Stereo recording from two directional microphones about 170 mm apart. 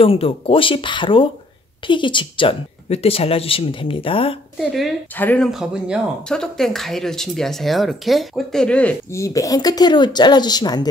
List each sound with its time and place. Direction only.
0.0 s speech: 35° left (ahead or behind)
5.1 s speech: 10° left (ahead or behind)
5.5 s speech: 5° right (ahead or behind); by 10.9 s 25° left (ahead or behind)